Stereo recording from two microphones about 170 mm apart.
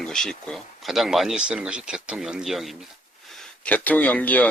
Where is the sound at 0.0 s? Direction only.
5° left (ahead or behind).